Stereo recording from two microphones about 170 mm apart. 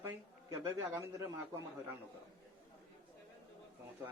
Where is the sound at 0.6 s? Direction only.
15° right (ahead or behind).